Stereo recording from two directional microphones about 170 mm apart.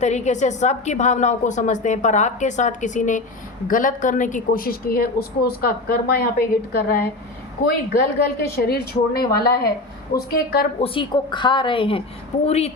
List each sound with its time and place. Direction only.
0.0 s a woman's voice: 40° left (ahead or behind); by 10.7 s 65° left (ahead or behind)
10.8 s a woman's voice: 30° left (ahead or behind)